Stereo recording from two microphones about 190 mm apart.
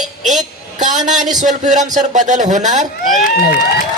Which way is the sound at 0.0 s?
Centre (ahead or behind).